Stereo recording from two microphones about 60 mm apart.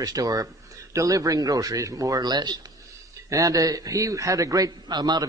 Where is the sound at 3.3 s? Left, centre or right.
Right.